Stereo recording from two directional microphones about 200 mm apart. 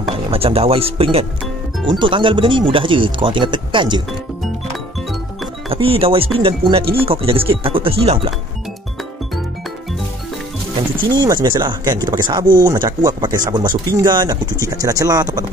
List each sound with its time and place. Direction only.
0.3 s speech: 30° right (ahead or behind)
5.7 s speech: 30° right (ahead or behind)
11.1 s speech: 20° right (ahead or behind)